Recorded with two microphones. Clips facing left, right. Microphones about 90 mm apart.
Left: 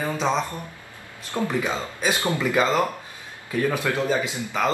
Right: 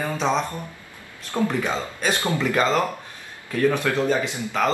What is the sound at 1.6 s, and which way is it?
A man's voice, 5° left (ahead or behind).